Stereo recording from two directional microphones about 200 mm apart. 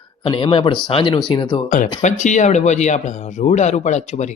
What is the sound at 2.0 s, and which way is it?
Speech, 40° left (ahead or behind).